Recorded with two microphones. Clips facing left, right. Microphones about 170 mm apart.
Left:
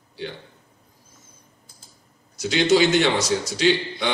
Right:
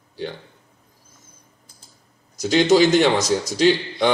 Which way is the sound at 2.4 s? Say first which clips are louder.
Right 3 dB; 45° right (ahead or behind).